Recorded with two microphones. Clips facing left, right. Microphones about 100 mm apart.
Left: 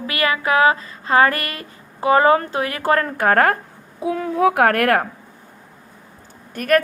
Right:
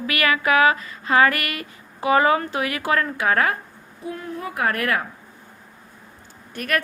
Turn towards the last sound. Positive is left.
turn(degrees=40)  # may be behind; listen again after turning